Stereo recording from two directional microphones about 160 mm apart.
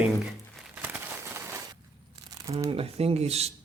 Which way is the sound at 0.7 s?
10° right (ahead or behind).